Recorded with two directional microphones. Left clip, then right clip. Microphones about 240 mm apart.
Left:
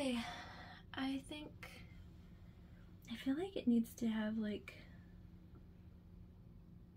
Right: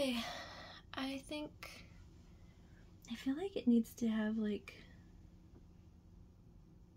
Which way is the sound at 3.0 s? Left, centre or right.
Right.